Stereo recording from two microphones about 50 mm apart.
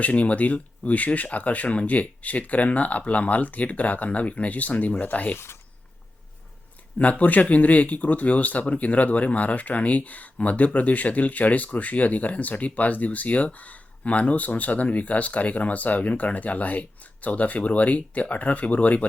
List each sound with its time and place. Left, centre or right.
0.0 s speech: left
7.0 s speech: left